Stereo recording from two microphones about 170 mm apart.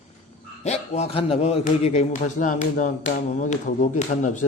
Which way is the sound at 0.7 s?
40° left (ahead or behind).